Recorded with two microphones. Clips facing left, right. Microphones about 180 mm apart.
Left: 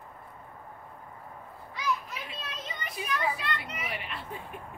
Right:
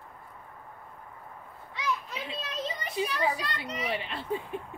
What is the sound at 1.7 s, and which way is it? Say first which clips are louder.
Children playing: even; 30° right (ahead or behind).